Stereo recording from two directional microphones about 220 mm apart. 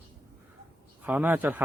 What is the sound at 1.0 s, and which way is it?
Speech, 10° right (ahead or behind).